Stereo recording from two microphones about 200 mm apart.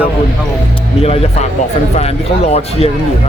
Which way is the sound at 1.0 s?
30° left (ahead or behind).